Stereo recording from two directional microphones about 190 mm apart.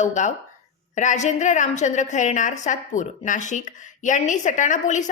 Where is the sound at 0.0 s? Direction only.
40° left (ahead or behind).